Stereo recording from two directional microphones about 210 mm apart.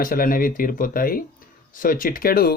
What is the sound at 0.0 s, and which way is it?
Speech, 45° left (ahead or behind).